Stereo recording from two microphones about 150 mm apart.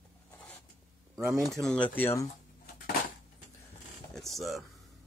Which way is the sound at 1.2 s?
Centre (ahead or behind).